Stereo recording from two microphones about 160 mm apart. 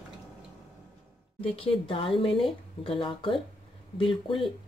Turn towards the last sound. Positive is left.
turn(degrees=35)  # may be behind; listen again after turning